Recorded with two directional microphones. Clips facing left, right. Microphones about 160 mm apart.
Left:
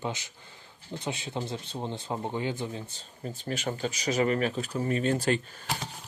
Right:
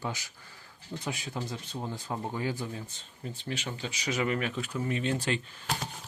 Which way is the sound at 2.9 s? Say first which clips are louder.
Left 3 dB; 40° left (ahead or behind).